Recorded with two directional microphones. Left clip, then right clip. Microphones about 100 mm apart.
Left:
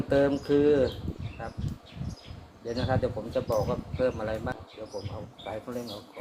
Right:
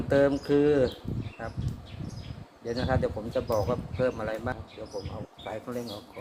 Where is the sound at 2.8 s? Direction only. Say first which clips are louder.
Even; 65° right (ahead or behind).